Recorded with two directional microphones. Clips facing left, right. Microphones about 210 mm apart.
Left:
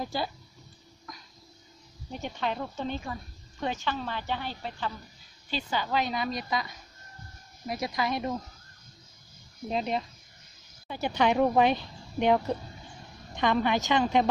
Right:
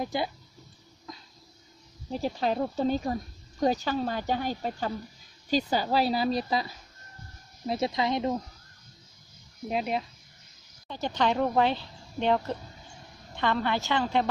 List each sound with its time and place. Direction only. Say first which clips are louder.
0.0 s speech: right 2 dB; 20° right (ahead or behind)
1.1 s a sound: right 3 dB; 25° right (ahead or behind)
2.0 s speech: right 5 dB; 35° right (ahead or behind)
9.7 s speech: even; 5° right (ahead or behind)
10.9 s speech: left 1 dB; 10° left (ahead or behind)